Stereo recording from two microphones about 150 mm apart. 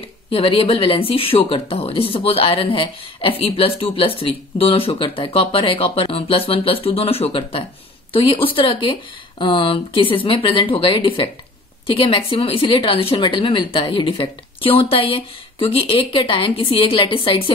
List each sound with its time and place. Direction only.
0.3 s speech: 35° left (ahead or behind)